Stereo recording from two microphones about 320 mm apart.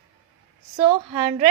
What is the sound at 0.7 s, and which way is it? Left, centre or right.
Speech, centre.